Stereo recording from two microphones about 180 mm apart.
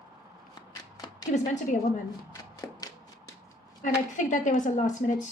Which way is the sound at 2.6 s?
20° left (ahead or behind).